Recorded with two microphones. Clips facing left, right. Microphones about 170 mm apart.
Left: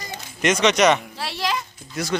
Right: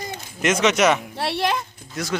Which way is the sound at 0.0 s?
55° right (ahead or behind).